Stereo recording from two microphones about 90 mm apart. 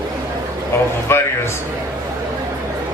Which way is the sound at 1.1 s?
25° left (ahead or behind).